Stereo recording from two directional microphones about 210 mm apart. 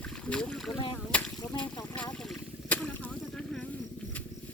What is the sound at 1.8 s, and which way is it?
Boat, 15° left (ahead or behind).